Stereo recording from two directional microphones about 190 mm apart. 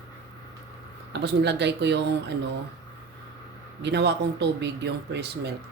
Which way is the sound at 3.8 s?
65° right (ahead or behind).